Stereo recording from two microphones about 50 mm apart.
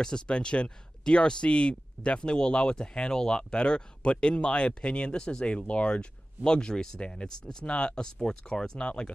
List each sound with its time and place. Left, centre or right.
0.0 s speech: centre